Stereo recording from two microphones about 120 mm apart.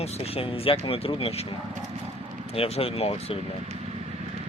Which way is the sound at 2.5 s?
55° left (ahead or behind).